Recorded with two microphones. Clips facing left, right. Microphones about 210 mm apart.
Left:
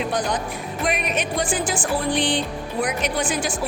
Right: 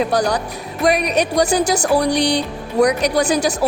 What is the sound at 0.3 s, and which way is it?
Speech, 70° right (ahead or behind).